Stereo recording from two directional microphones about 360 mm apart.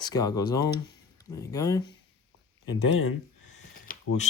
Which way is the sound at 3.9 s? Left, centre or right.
Left.